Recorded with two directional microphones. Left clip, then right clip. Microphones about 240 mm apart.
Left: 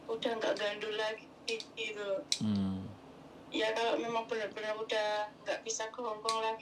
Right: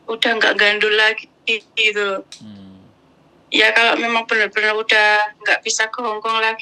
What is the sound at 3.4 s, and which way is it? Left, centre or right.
Speech, right.